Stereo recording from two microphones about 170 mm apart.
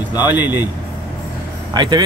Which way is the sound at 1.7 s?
25° right (ahead or behind).